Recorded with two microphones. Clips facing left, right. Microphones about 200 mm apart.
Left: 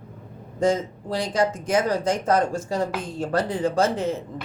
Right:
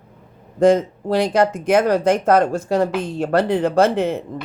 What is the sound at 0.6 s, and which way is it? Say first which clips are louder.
Speech: right 8 dB; 60° right (ahead or behind).